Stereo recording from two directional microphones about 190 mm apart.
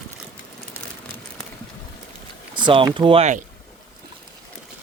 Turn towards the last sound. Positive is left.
turn(degrees=-35)  # may be behind; listen again after turning